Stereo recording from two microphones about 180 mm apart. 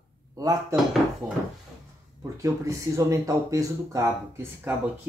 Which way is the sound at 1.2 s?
15° right (ahead or behind).